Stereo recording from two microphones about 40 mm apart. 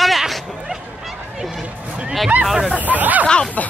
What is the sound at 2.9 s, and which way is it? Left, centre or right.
Snake, right.